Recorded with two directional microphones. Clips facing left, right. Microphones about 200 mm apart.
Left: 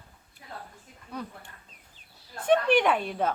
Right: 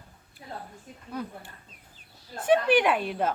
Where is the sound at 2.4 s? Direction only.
5° right (ahead or behind).